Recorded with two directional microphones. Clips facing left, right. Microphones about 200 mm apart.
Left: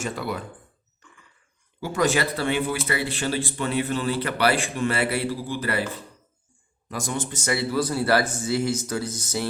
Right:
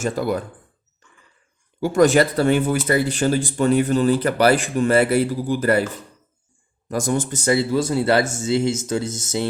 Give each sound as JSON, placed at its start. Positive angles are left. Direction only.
{"t": 0.0, "sound": "speech", "side_deg": -45}
{"t": 1.8, "sound": "speech", "side_deg": -50}
{"t": 6.8, "sound": "speech", "side_deg": -45}
{"t": 7.4, "sound": "speech", "side_deg": -25}